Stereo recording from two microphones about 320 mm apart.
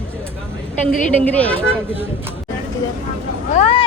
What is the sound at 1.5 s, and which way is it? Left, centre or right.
Speech, centre.